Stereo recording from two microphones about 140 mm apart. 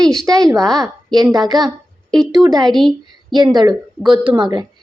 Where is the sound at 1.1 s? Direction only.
30° right (ahead or behind).